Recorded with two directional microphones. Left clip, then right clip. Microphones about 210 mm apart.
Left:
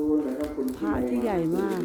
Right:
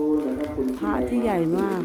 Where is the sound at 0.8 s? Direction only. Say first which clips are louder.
Right 2 dB; 5° right (ahead or behind).